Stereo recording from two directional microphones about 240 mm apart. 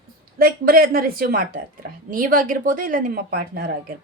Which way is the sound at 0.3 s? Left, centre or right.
Right.